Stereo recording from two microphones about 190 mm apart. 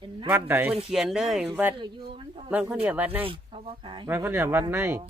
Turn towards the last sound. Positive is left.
turn(degrees=-15)  # may be behind; listen again after turning